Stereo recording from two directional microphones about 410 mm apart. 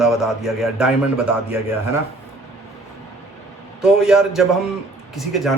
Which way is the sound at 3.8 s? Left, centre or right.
Centre.